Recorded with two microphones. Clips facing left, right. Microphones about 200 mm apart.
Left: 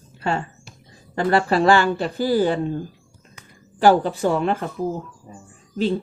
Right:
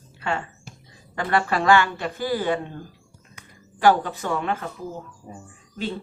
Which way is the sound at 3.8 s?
30° left (ahead or behind).